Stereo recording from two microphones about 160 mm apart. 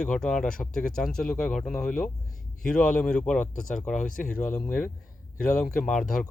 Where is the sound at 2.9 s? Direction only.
5° left (ahead or behind).